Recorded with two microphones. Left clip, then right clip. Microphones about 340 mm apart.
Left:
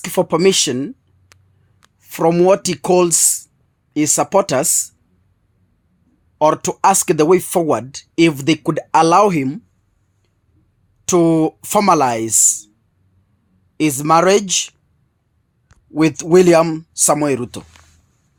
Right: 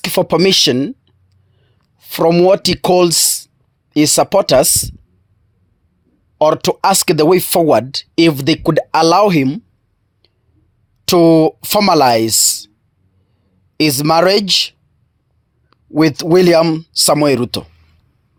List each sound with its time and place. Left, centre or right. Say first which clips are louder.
0.0 s speech: right 2 dB; right
2.0 s speech: right 3 dB; right
6.4 s speech: right 2 dB; right
11.0 s speech: right 5 dB; right
13.7 s speech: right 2 dB; right
15.9 s speech: right 2 dB; right